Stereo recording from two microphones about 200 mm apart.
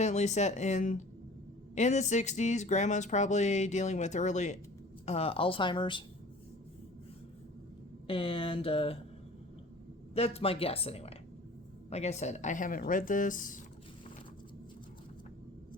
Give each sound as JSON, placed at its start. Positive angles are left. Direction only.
{"t": 0.0, "sound": "speech", "side_deg": 35}
{"t": 8.0, "sound": "speech", "side_deg": 25}
{"t": 10.2, "sound": "speech", "side_deg": 30}